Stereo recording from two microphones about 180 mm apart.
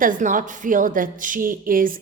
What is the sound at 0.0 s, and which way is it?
A woman's voice, 45° right (ahead or behind).